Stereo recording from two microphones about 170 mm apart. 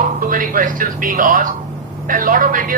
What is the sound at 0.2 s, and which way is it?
A woman's voice, 55° right (ahead or behind).